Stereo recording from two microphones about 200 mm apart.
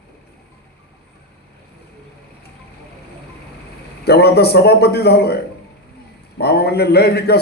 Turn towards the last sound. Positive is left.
turn(degrees=55)  # may be behind; listen again after turning